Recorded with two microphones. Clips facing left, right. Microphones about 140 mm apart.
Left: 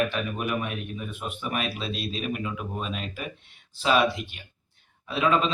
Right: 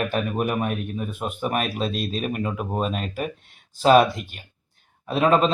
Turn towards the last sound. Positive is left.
turn(degrees=-45)  # may be behind; listen again after turning